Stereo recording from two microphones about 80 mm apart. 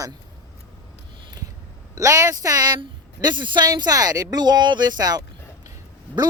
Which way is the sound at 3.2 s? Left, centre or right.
Right.